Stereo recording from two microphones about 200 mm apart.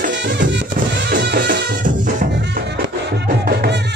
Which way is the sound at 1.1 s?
45° right (ahead or behind).